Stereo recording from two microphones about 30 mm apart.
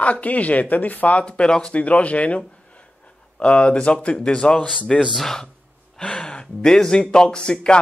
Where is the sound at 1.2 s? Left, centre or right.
Left.